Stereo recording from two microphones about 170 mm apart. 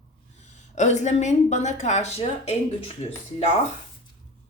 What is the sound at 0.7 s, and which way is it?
Speech, 45° left (ahead or behind).